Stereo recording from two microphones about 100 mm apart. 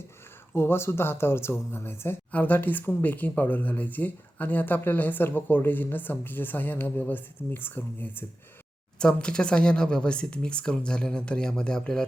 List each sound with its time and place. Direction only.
0.5 s speech: 25° left (ahead or behind)
9.0 s speech: 10° left (ahead or behind)